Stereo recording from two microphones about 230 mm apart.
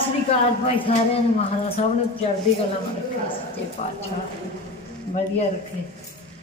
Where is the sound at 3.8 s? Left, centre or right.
Left.